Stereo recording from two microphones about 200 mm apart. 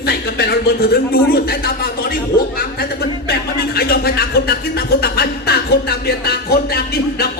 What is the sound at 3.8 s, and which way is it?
A man's voice, 50° left (ahead or behind).